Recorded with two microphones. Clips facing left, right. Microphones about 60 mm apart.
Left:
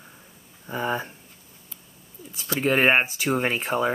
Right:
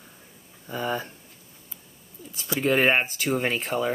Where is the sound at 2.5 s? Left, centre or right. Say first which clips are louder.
Even; centre.